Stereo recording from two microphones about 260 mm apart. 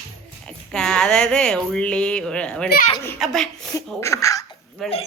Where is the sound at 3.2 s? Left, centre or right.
Centre.